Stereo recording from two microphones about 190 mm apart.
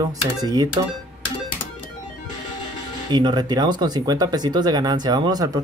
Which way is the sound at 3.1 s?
20° right (ahead or behind).